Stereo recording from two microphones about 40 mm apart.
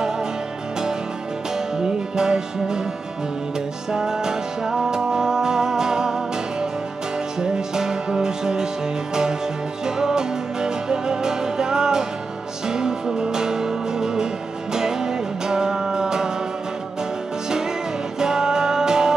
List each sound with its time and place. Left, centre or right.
1.8 s music: centre
3.9 s music: centre
7.3 s music: centre
9.8 s music: centre
18.2 s music: centre